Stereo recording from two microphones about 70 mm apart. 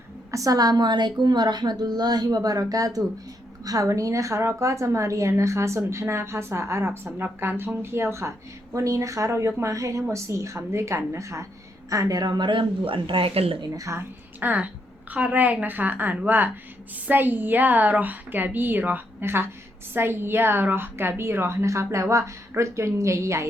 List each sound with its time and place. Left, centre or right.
0.3 s a woman's voice: right
8.7 s a woman's voice: right
13.7 s speech: right
14.3 s a woman's voice: right